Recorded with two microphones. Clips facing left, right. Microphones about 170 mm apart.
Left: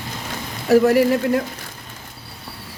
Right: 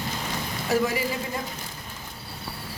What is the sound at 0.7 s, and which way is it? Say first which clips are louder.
Speech: left 11 dB; 65° left (ahead or behind).